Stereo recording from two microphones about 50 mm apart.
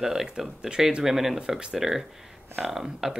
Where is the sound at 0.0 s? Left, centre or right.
Centre.